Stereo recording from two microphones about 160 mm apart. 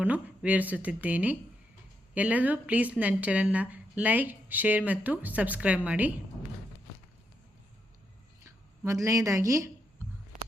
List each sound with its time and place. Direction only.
0.0 s speech: 10° right (ahead or behind)
8.4 s speech: 20° right (ahead or behind)